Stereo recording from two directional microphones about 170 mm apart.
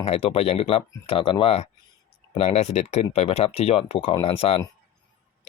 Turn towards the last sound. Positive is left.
turn(degrees=35)  # may be behind; listen again after turning